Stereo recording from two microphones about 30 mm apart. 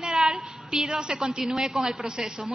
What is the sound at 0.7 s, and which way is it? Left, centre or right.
Speech, right.